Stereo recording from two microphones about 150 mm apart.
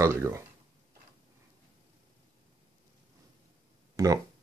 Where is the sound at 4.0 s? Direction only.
20° right (ahead or behind).